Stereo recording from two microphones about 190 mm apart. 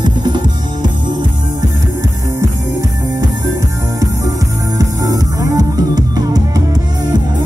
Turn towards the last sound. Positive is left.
turn(degrees=-20)  # may be behind; listen again after turning